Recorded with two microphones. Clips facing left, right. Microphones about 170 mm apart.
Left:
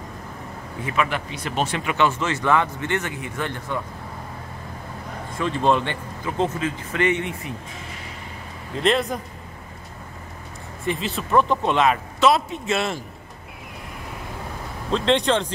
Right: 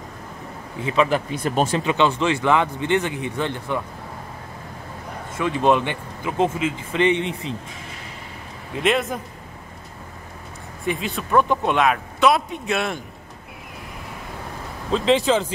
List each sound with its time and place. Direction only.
1.3 s speech: 45° right (ahead or behind)
2.0 s a man's voice: 20° right (ahead or behind)
5.4 s a man's voice: 15° right (ahead or behind)
8.8 s a man's voice: 5° right (ahead or behind)
10.8 s a man's voice: centre (ahead or behind)
14.9 s a man's voice: 5° right (ahead or behind)